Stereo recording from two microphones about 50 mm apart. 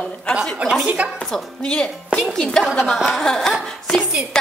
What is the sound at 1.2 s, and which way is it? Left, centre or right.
Speech, centre.